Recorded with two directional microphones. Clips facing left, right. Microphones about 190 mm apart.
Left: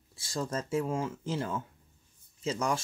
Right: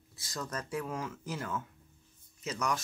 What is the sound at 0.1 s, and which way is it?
Speech, 30° left (ahead or behind).